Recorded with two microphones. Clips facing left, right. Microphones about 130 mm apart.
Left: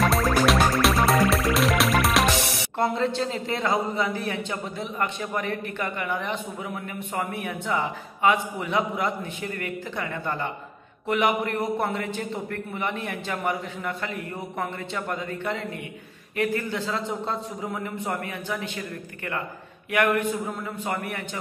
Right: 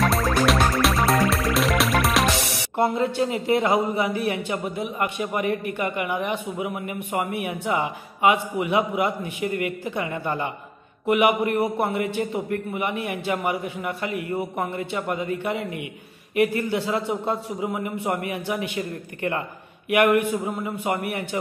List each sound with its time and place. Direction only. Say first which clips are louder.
0.0 s music: even; centre (ahead or behind); by 10.5 s 15° right (ahead or behind)
11.1 s a man's voice: right 4 dB; 15° right (ahead or behind)